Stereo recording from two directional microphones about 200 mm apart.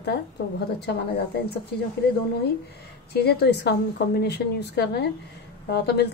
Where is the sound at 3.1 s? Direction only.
55° left (ahead or behind).